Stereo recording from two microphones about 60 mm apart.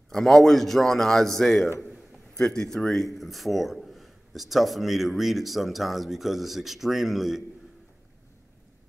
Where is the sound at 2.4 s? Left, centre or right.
Centre.